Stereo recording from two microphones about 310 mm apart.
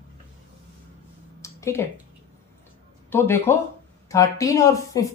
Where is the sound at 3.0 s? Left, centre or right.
Centre.